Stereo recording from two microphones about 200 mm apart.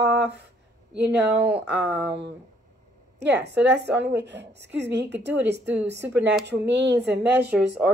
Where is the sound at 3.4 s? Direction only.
60° right (ahead or behind).